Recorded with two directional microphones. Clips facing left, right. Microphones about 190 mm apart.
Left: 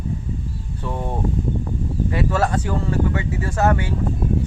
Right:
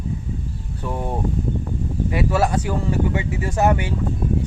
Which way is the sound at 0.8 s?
10° right (ahead or behind).